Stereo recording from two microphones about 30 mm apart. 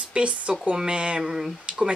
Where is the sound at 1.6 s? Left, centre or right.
Right.